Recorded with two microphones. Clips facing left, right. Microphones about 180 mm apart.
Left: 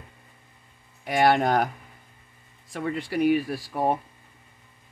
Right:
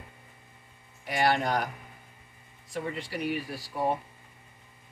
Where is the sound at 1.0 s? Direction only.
55° left (ahead or behind).